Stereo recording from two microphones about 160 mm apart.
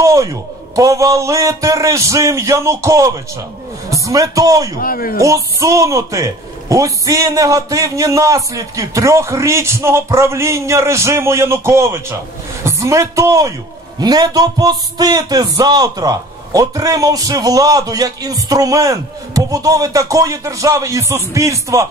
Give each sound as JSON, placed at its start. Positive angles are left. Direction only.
{"t": 0.0, "sound": "music", "side_deg": -20}
{"t": 4.7, "sound": "a man's voice", "side_deg": 65}
{"t": 5.2, "sound": "music", "side_deg": -20}